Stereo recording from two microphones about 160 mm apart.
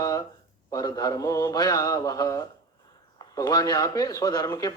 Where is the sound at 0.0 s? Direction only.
20° left (ahead or behind).